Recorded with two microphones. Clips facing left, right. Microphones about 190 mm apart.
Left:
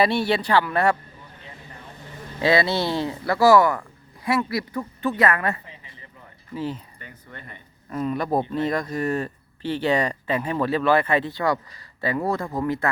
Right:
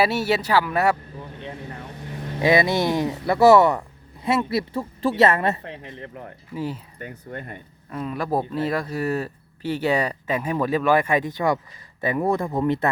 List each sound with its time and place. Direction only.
0.0 s speech: 5° right (ahead or behind)
2.4 s speech: 15° right (ahead or behind)
5.6 s speech: 70° right (ahead or behind)
6.5 s speech: 10° right (ahead or behind)
7.3 s speech: 50° right (ahead or behind)
7.9 s speech: centre (ahead or behind); by 12.9 s 20° right (ahead or behind)